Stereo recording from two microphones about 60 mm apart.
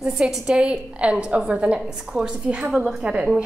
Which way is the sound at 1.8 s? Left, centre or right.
Centre.